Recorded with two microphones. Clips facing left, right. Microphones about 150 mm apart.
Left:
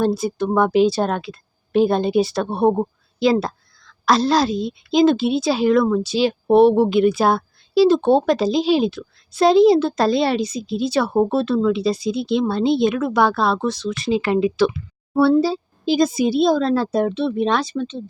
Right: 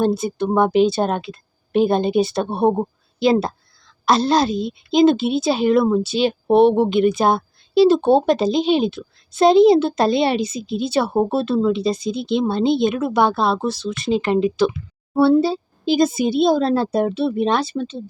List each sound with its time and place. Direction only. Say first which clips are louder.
0.2 s speech: left 1 dB; centre (ahead or behind)
0.4 s speech: right 1 dB; 25° right (ahead or behind)
0.7 s speech: even; centre (ahead or behind)